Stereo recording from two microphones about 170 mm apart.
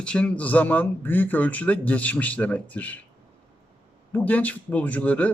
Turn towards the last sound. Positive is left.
turn(degrees=10)  # may be behind; listen again after turning